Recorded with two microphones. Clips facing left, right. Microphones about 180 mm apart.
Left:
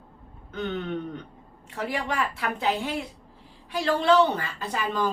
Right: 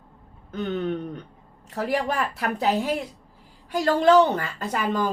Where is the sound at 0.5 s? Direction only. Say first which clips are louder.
Right 3 dB; 35° right (ahead or behind).